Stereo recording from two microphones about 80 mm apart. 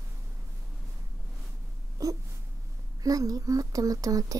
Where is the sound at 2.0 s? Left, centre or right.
Right.